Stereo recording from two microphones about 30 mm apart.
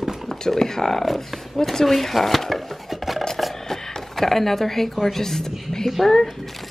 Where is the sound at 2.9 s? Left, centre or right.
Centre.